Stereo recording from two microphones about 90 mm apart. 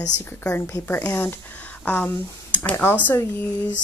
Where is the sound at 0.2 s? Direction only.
25° left (ahead or behind).